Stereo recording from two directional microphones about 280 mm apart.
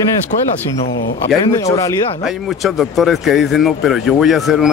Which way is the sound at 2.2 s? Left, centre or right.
Centre.